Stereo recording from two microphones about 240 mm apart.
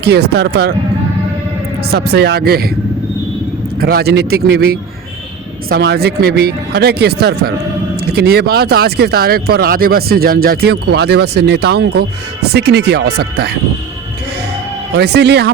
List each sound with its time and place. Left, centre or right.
0.0 s speech: right
1.9 s speech: right
3.8 s speech: right
14.9 s speech: right